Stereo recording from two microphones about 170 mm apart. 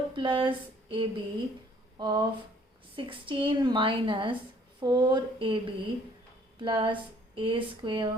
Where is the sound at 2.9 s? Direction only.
30° right (ahead or behind).